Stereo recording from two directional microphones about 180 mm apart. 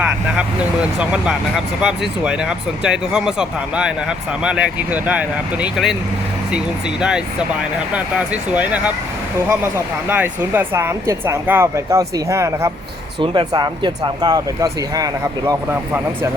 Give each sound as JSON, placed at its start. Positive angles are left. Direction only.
{"t": 0.0, "sound": "speech", "side_deg": -5}
{"t": 7.0, "sound": "speech", "side_deg": -5}
{"t": 13.1, "sound": "speech", "side_deg": -25}